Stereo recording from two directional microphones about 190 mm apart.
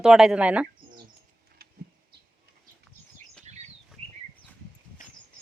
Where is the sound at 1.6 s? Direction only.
55° right (ahead or behind).